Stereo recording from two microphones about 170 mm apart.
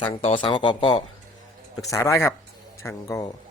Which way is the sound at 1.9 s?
15° left (ahead or behind).